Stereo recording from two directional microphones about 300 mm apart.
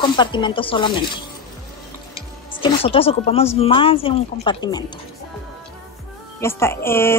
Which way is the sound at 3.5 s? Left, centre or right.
Centre.